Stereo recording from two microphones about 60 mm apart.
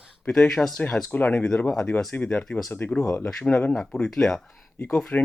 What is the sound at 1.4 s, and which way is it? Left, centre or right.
Speech, left.